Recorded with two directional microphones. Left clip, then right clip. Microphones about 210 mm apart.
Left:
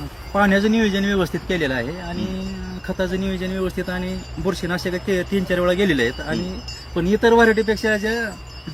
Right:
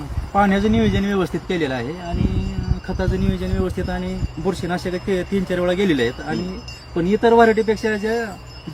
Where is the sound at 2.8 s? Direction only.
10° right (ahead or behind).